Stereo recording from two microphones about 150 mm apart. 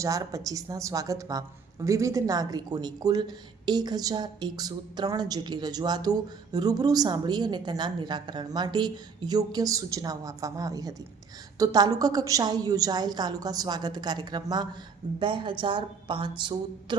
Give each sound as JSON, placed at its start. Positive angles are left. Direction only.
{"t": 0.0, "sound": "a woman's voice", "side_deg": -20}